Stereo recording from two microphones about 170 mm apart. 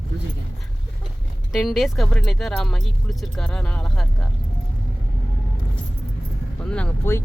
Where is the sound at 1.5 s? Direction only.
Centre (ahead or behind).